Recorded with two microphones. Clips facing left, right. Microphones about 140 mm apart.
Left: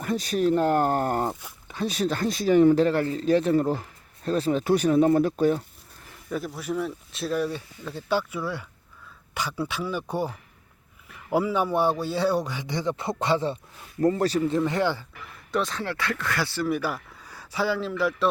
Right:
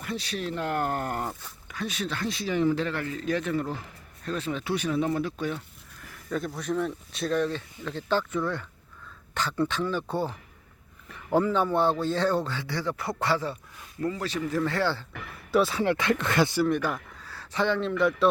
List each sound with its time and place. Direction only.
0.0 s speech: 45° left (ahead or behind)
6.3 s a man's voice: 5° left (ahead or behind); by 13.6 s 25° left (ahead or behind)
14.0 s speech: 40° left (ahead or behind)
14.5 s a man's voice: 20° left (ahead or behind)
15.5 s speech: 5° right (ahead or behind)
15.8 s speech: 20° right (ahead or behind)
16.6 s speech: 5° left (ahead or behind)